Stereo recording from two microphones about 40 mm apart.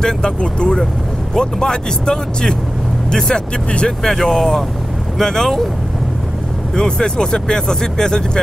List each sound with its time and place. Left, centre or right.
0.0 s speech: left
4.1 s speech: centre
6.7 s speech: centre